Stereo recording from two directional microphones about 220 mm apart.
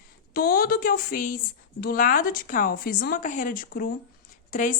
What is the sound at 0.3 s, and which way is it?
Speech, 40° left (ahead or behind).